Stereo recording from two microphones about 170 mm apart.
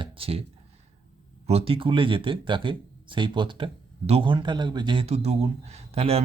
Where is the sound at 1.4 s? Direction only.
35° right (ahead or behind).